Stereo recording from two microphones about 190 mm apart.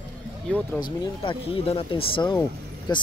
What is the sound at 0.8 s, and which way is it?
Speech, 25° left (ahead or behind).